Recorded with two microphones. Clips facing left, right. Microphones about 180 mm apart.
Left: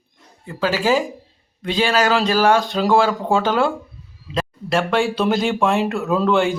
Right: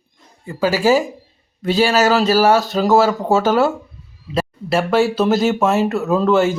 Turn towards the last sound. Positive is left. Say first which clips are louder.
# right 3 dB
turn(degrees=-5)  # may be behind; listen again after turning